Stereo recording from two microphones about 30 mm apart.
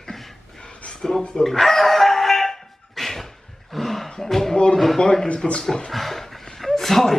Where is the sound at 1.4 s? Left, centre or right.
Centre.